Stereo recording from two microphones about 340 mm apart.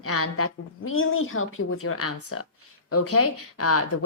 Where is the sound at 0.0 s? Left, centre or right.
Left.